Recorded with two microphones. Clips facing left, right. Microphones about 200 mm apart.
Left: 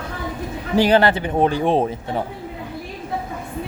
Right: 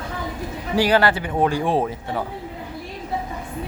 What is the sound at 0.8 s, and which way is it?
A man's voice, 20° left (ahead or behind).